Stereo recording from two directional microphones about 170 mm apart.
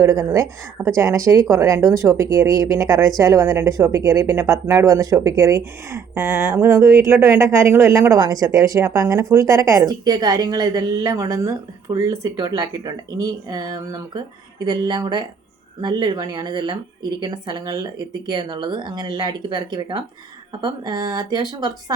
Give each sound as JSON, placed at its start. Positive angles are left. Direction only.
{"t": 0.0, "sound": "speech", "side_deg": -20}